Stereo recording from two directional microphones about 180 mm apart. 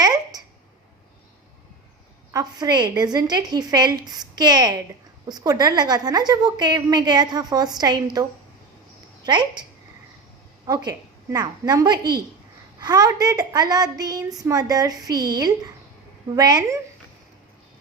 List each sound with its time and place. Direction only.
0.0 s a sound: 20° right (ahead or behind)
2.3 s a woman's voice: 20° right (ahead or behind)
9.2 s a woman's voice: 25° right (ahead or behind)
10.7 s a woman's voice: 20° right (ahead or behind)